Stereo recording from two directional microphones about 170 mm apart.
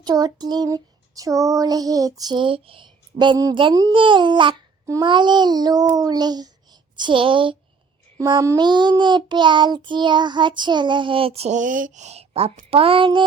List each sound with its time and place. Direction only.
0.0 s child singing: 20° right (ahead or behind)
6.9 s speech: 30° right (ahead or behind)
8.2 s child singing: 20° right (ahead or behind); by 12.5 s 35° right (ahead or behind)
12.7 s speech: 30° right (ahead or behind)